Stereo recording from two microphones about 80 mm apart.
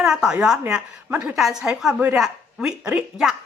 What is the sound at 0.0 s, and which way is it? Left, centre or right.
Speech, centre.